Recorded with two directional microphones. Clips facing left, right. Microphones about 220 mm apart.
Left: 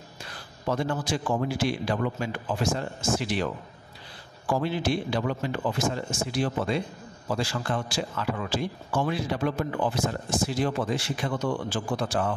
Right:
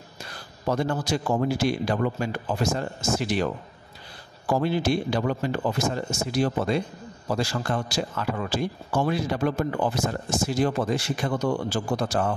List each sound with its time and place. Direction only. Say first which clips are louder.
0.7 s a man's voice: right 2 dB; 40° right (ahead or behind)
4.5 s a man's voice: right 3 dB; 45° right (ahead or behind)